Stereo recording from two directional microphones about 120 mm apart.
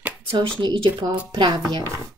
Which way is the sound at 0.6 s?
35° right (ahead or behind).